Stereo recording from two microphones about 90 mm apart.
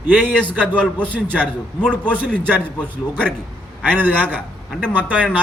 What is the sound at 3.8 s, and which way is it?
Speech, 20° right (ahead or behind).